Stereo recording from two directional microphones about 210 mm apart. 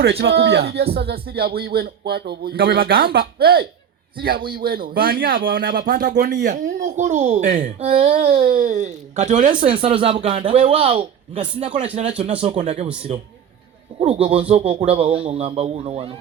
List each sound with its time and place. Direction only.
0.0 s a child's voice: 50° right (ahead or behind)
9.6 s a child's voice: 25° right (ahead or behind)